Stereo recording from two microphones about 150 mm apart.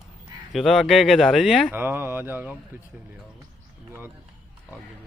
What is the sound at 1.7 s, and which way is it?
Speech, 15° right (ahead or behind).